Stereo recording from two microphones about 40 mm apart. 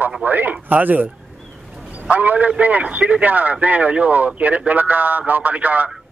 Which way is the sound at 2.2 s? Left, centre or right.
Right.